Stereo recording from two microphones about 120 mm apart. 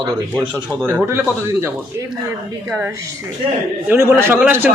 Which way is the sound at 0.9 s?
15° right (ahead or behind).